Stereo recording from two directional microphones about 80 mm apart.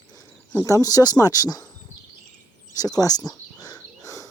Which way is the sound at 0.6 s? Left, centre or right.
Left.